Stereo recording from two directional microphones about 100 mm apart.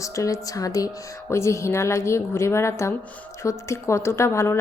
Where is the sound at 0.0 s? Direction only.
35° left (ahead or behind).